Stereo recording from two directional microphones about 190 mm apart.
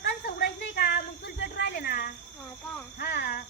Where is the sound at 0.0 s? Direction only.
55° left (ahead or behind).